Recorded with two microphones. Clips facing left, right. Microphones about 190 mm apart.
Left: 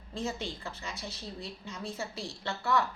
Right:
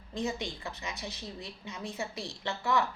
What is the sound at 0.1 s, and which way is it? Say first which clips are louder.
A woman's voice: right 1 dB; 15° right (ahead or behind).